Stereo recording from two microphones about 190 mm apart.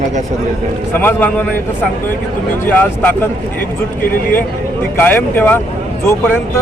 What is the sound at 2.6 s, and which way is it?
Speech, 10° left (ahead or behind).